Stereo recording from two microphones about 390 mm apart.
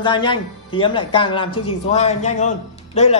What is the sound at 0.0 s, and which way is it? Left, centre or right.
A man's voice, centre.